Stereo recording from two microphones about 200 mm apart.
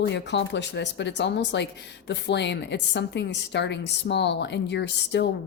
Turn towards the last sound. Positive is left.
turn(degrees=60)  # may be behind; listen again after turning